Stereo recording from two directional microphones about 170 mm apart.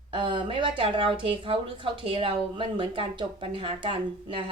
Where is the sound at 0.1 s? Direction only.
30° right (ahead or behind).